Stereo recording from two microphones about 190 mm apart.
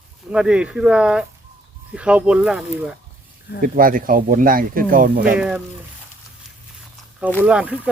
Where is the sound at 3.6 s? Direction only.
45° right (ahead or behind).